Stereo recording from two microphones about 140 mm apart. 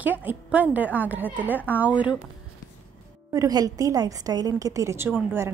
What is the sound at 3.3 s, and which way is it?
A woman's voice, 25° right (ahead or behind).